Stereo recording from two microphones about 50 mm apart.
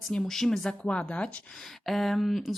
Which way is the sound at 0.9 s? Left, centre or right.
Left.